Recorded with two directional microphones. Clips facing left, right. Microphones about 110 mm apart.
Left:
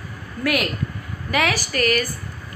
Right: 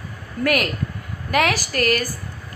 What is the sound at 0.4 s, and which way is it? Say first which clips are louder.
A woman's voice: right 2 dB; 50° right (ahead or behind).